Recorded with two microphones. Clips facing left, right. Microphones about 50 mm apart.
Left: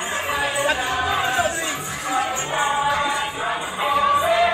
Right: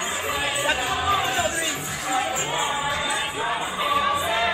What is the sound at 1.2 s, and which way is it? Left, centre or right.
Crowd, centre.